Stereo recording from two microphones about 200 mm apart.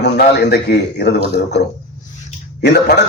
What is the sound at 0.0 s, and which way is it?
A man's voice, 55° left (ahead or behind).